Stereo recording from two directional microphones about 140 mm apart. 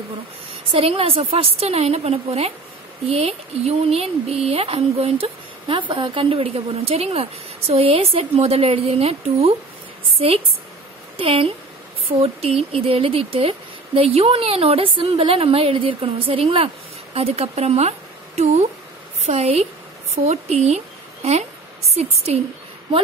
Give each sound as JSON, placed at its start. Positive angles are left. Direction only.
{"t": 0.7, "sound": "a woman's voice", "side_deg": -45}